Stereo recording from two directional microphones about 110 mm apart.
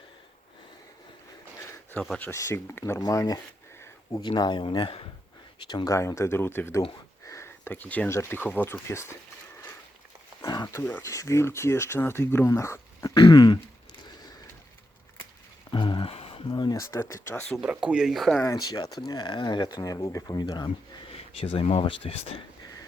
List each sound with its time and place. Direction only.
2.0 s speech: 10° left (ahead or behind)
2.3 s speech: 25° left (ahead or behind); by 5.0 s 55° left (ahead or behind)
5.5 s speech: 40° left (ahead or behind); by 6.8 s 20° left (ahead or behind)
7.3 s a sound: 25° left (ahead or behind)
8.1 s speech: 20° left (ahead or behind)
10.4 s a sound: 35° left (ahead or behind)
10.8 s speech: 15° left (ahead or behind)
11.0 s speech: 30° left (ahead or behind)
13.1 s speech: 40° left (ahead or behind)
15.7 s a sound: 45° left (ahead or behind)
16.5 s speech: 40° left (ahead or behind); by 17.6 s 20° left (ahead or behind)
17.6 s speech: 10° right (ahead or behind)
18.4 s speech: 35° left (ahead or behind)
21.1 s speech: 60° left (ahead or behind)